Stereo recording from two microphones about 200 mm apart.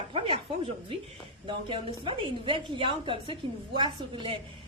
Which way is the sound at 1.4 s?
25° right (ahead or behind).